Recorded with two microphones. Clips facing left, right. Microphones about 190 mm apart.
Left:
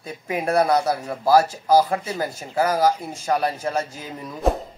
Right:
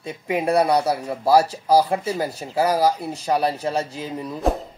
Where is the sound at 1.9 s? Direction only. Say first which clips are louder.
Right 2 dB; 30° right (ahead or behind).